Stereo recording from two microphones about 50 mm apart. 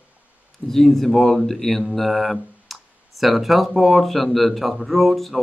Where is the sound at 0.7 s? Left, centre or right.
Centre.